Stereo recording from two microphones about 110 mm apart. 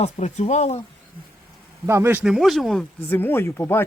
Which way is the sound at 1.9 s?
25° right (ahead or behind).